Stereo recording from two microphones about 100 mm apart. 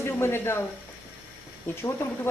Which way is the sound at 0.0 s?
25° left (ahead or behind).